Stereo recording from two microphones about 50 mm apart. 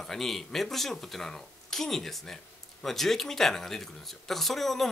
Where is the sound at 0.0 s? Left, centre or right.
Centre.